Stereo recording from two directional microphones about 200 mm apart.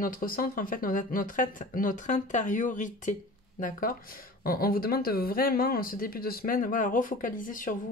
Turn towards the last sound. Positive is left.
turn(degrees=40)  # may be behind; listen again after turning